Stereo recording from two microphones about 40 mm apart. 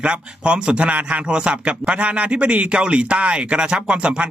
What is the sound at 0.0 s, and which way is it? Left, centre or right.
A man's voice, right.